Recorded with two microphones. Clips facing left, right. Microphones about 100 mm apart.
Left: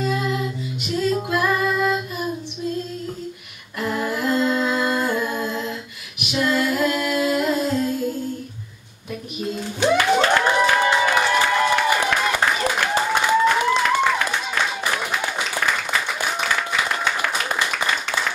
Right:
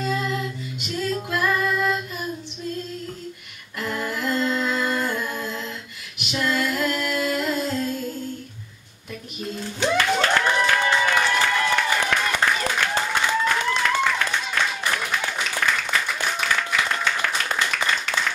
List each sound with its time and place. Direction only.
0.0 s female singing: 10° left (ahead or behind)
3.8 s humming: 15° left (ahead or behind)
6.3 s music: 15° left (ahead or behind)
9.6 s music: 15° left (ahead or behind)